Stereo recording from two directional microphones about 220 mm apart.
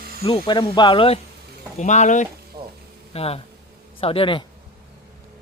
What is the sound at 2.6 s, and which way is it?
Frying, 25° right (ahead or behind).